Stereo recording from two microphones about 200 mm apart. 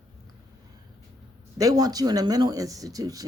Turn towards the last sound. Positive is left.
turn(degrees=-20)  # may be behind; listen again after turning